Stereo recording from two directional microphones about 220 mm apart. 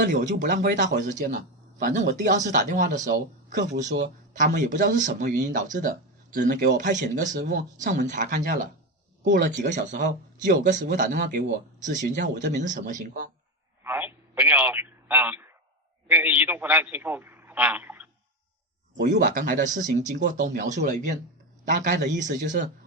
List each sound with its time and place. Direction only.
0.0 s speech: 35° right (ahead or behind)
0.3 s speech: 50° right (ahead or behind)
0.5 s speech: 35° right (ahead or behind)
13.8 s a man's voice: 10° right (ahead or behind)
19.1 s speech: 35° right (ahead or behind)